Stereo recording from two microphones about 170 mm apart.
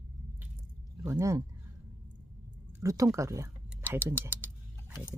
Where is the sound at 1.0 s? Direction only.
15° right (ahead or behind).